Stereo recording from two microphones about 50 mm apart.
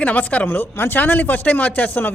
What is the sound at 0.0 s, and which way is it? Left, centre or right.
Speech, left.